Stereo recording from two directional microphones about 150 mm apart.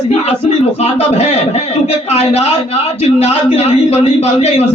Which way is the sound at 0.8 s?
45° left (ahead or behind).